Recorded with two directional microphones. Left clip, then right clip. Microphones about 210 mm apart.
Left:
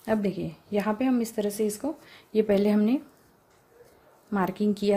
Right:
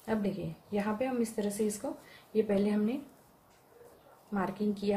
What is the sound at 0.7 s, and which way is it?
Speech, 45° left (ahead or behind).